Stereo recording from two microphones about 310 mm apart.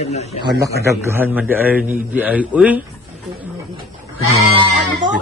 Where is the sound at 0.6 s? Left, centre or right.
Centre.